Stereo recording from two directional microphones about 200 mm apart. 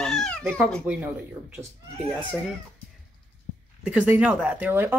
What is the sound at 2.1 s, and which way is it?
Speech, centre (ahead or behind).